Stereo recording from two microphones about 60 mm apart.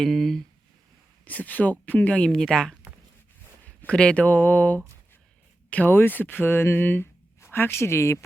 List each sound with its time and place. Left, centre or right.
0.0 s speech: centre
1.2 s speech: left
2.3 s speech: centre
3.8 s speech: centre; by 8.2 s left